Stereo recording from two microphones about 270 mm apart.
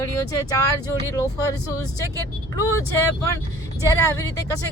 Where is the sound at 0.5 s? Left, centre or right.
Centre.